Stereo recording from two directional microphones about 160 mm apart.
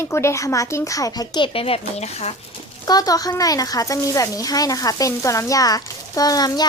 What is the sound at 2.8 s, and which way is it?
Speech, 25° left (ahead or behind).